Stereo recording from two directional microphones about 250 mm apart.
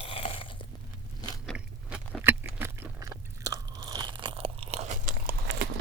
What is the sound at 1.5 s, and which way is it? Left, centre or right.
Chewing, centre.